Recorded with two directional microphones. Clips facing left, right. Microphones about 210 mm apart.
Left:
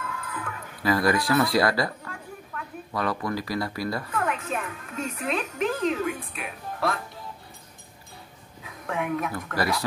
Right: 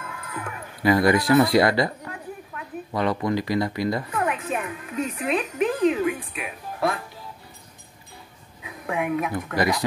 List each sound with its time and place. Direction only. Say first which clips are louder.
0.0 s speech: even; 25° right (ahead or behind)
4.6 s music: right 3 dB; 15° right (ahead or behind)
4.9 s a woman's voice: right 4 dB; centre (ahead or behind)
8.8 s speech: right 3 dB; 10° right (ahead or behind)